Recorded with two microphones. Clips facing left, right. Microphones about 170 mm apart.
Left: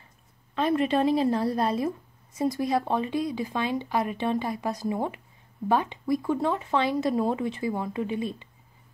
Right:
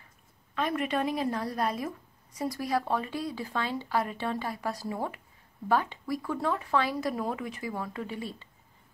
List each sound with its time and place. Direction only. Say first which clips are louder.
0.6 s speech: left 6 dB; 30° left (ahead or behind)